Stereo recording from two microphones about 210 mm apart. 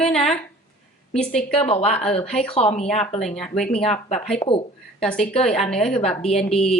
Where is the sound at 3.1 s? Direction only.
Centre (ahead or behind).